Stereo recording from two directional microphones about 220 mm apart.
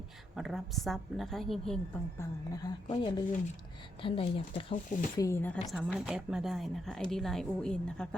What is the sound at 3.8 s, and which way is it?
Speech, 25° left (ahead or behind).